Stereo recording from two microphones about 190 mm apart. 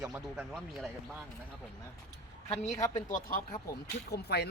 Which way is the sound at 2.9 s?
45° left (ahead or behind).